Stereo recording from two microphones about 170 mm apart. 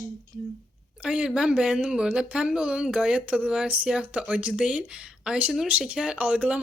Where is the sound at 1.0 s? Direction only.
5° right (ahead or behind).